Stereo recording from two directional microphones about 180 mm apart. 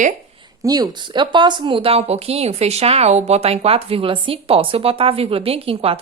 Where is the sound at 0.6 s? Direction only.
20° right (ahead or behind).